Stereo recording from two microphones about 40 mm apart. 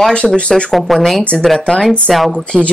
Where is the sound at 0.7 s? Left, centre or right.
Centre.